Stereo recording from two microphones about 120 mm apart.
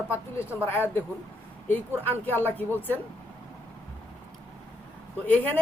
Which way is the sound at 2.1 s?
15° left (ahead or behind).